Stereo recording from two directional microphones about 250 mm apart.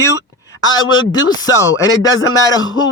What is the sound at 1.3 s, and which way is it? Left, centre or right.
Speech, centre.